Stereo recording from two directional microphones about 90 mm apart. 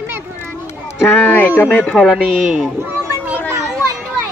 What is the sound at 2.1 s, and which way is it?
Speech, 10° right (ahead or behind).